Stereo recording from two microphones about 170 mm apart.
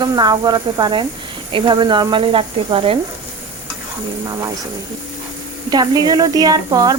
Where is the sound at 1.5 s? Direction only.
25° right (ahead or behind).